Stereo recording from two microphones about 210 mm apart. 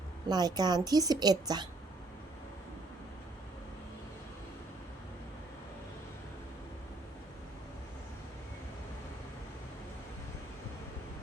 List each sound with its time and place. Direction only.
0.3 s a woman's voice: 20° right (ahead or behind)